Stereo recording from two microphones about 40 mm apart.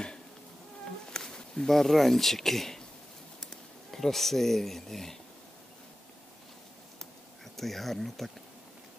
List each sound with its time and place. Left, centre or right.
1.1 s a sound: centre
1.7 s speech: centre
3.9 s speech: centre
7.5 s speech: centre